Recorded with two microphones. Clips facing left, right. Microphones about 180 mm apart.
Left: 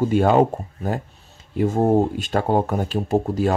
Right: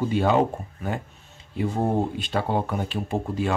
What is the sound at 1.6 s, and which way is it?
Speech, 45° left (ahead or behind).